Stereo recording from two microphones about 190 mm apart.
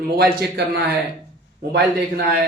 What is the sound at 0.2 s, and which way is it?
Speech, 55° right (ahead or behind).